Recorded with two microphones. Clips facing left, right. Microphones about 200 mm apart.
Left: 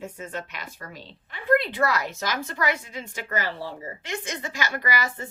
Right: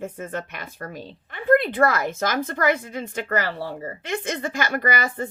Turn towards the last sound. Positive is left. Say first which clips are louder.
# right 4 dB
turn(degrees=-55)  # may be behind; listen again after turning